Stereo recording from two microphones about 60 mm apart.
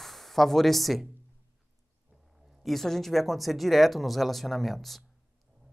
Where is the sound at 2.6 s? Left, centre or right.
Centre.